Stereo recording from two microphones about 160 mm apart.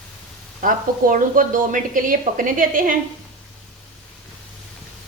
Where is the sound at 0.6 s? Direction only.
60° right (ahead or behind).